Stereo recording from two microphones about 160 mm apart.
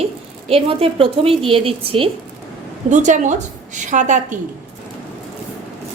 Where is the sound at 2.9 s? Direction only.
50° right (ahead or behind).